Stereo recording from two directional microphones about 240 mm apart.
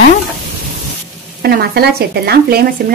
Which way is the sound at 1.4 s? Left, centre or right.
Right.